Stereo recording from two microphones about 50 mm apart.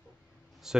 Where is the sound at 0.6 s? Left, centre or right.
Centre.